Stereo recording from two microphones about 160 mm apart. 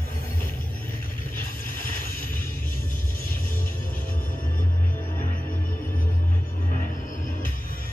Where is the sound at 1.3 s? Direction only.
60° left (ahead or behind).